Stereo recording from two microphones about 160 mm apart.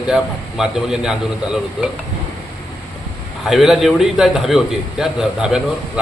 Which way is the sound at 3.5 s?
Centre (ahead or behind).